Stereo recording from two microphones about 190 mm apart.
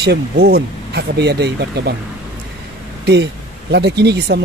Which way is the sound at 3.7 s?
60° right (ahead or behind).